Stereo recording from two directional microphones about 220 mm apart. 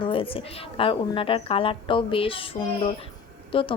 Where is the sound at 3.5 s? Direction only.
25° left (ahead or behind).